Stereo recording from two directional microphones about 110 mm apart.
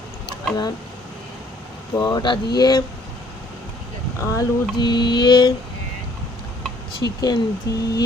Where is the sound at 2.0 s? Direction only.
40° left (ahead or behind).